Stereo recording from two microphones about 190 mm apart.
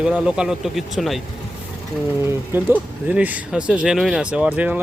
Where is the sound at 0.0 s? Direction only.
5° right (ahead or behind).